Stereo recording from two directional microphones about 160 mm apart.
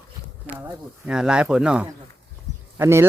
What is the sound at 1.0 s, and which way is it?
Speech, 5° right (ahead or behind).